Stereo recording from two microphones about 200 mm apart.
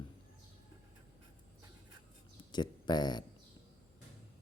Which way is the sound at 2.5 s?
20° left (ahead or behind).